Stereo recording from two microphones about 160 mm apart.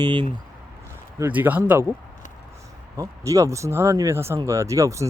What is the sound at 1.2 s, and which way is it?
Speech, 10° right (ahead or behind).